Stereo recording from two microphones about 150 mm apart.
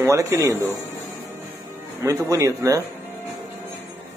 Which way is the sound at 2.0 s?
20° right (ahead or behind).